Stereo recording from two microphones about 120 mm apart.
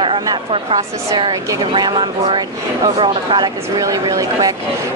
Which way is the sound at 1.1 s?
40° right (ahead or behind).